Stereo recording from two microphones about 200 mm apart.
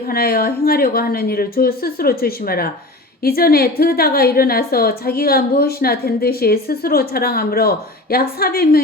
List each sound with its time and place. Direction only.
0.1 s a woman's voice: 50° left (ahead or behind)